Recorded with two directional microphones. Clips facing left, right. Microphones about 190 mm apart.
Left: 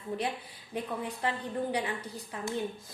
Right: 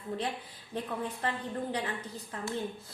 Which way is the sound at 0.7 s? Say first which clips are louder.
Even; 10° left (ahead or behind).